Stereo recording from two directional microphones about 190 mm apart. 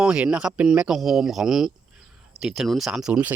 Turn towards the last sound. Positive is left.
turn(degrees=-5)  # may be behind; listen again after turning